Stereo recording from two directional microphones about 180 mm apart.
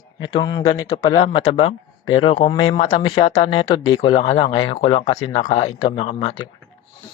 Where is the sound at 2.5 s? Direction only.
25° left (ahead or behind).